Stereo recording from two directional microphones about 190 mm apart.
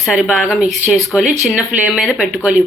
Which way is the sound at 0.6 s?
40° right (ahead or behind).